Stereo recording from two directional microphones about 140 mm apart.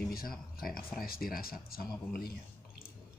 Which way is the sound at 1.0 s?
90° left.